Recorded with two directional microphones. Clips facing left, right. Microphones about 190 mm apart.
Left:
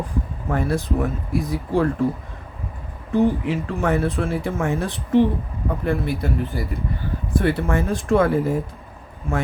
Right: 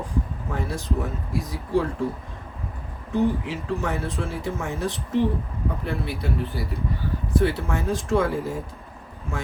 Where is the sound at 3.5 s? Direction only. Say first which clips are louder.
Left 5 dB; 55° left (ahead or behind).